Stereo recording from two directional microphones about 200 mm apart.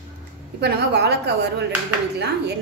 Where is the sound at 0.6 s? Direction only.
55° right (ahead or behind).